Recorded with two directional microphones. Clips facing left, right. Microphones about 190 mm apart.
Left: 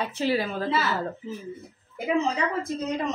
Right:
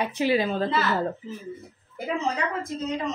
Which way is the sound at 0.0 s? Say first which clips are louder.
Right 2 dB; 15° right (ahead or behind).